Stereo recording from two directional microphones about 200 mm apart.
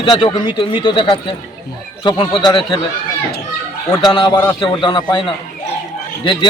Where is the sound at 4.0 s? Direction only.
20° left (ahead or behind).